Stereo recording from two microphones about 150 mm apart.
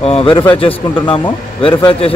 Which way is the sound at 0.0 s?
40° left (ahead or behind).